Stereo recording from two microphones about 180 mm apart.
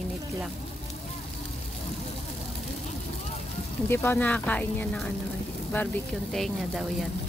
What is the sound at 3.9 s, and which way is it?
Speech, 15° left (ahead or behind).